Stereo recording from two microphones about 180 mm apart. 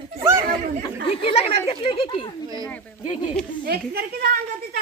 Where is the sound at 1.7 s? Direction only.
30° left (ahead or behind).